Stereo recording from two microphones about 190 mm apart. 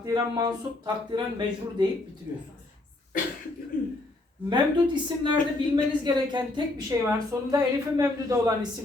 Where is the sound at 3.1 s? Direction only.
45° left (ahead or behind).